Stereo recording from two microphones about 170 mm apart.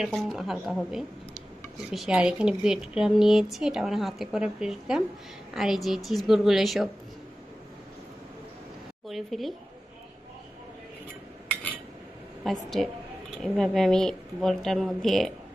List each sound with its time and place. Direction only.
0.0 s a woman's voice: centre (ahead or behind)
9.0 s speech: centre (ahead or behind)
12.5 s a woman's voice: centre (ahead or behind)